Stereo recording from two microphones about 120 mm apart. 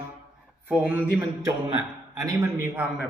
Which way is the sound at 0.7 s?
15° right (ahead or behind).